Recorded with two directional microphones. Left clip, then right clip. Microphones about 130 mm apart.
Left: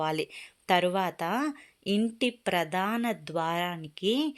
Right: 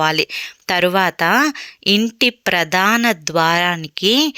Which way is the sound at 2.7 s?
35° right (ahead or behind).